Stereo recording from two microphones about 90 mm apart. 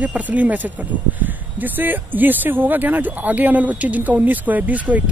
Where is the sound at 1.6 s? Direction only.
20° right (ahead or behind).